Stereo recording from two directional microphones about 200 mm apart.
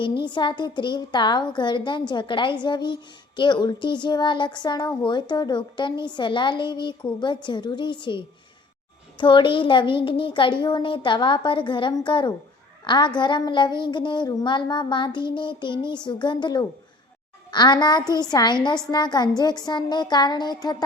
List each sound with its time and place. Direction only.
0.2 s a woman's voice: 25° left (ahead or behind)